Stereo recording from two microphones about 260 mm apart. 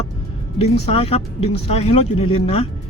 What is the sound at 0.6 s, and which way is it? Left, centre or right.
Speech, left.